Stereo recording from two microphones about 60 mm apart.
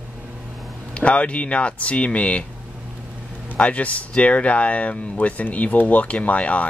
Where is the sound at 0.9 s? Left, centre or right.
Left.